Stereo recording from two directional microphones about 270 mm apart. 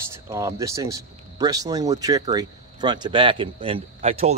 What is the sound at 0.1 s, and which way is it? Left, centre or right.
Speech, centre.